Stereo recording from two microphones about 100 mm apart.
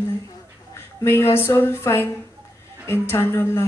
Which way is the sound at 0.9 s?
25° left (ahead or behind).